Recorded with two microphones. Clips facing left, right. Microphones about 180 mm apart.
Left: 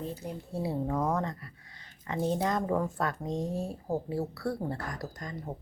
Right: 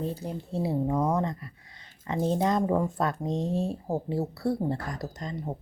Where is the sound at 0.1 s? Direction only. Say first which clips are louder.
Right 4 dB; 25° right (ahead or behind).